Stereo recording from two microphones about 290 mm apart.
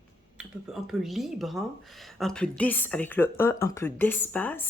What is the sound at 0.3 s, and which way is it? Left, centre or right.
Speech, centre.